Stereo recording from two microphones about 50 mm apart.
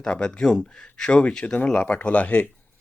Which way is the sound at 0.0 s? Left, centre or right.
Centre.